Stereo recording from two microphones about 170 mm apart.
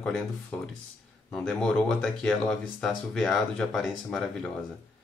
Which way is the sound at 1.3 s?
5° left (ahead or behind).